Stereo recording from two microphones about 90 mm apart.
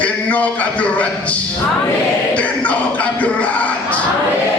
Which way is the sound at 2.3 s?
15° left (ahead or behind).